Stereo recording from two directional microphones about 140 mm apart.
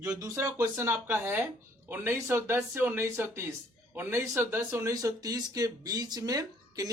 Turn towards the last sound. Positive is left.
turn(degrees=-25)  # may be behind; listen again after turning